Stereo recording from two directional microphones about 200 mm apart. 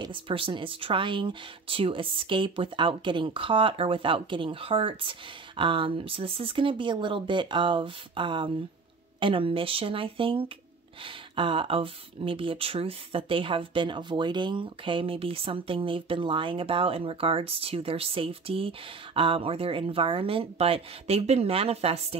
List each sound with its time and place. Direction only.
0.0 s speech: 25° right (ahead or behind)